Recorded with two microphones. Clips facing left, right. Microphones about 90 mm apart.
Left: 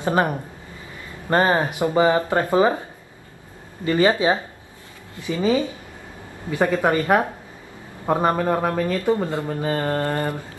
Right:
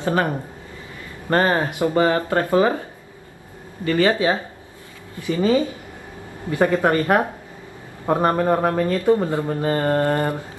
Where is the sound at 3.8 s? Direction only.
20° left (ahead or behind).